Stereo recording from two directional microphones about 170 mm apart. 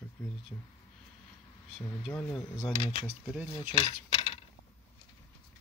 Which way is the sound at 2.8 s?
30° left (ahead or behind).